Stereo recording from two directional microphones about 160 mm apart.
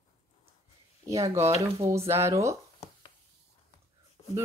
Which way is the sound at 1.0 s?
20° right (ahead or behind).